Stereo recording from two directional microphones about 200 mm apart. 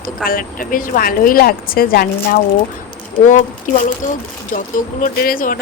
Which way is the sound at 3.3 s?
40° left (ahead or behind).